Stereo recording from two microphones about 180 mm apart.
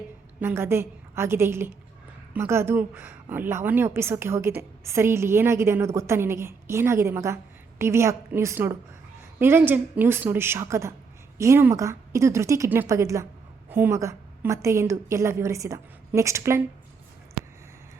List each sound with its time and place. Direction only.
0.3 s a woman's voice: 10° right (ahead or behind)